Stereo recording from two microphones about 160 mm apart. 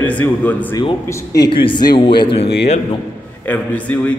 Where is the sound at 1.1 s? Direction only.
20° left (ahead or behind).